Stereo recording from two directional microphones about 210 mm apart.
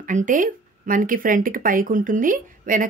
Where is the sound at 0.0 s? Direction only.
40° right (ahead or behind).